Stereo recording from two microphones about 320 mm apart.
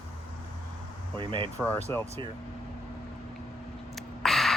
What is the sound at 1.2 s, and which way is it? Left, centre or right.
Speech, centre.